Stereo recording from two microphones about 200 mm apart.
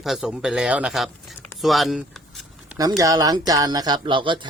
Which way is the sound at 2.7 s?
15° right (ahead or behind).